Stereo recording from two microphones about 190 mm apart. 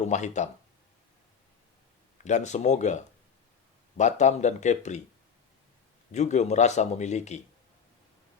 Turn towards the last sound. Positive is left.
turn(degrees=35)  # may be behind; listen again after turning